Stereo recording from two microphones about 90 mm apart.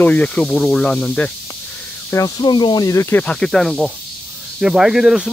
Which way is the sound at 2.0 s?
40° left (ahead or behind).